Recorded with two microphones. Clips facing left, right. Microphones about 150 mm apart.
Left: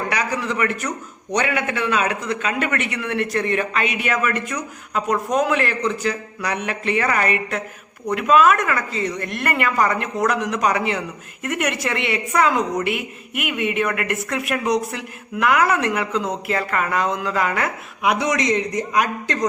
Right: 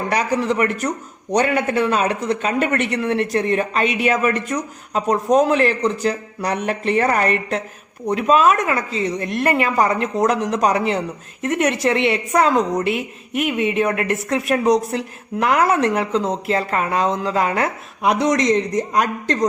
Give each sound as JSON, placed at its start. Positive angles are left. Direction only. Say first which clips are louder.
{"t": 0.1, "sound": "speech", "louder": "right 5 dB", "side_deg": -35}